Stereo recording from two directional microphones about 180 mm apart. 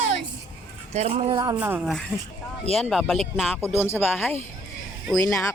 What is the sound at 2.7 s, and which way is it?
Speech, centre (ahead or behind).